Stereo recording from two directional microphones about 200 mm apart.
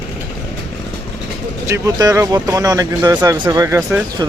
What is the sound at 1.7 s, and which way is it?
Speech, 15° right (ahead or behind).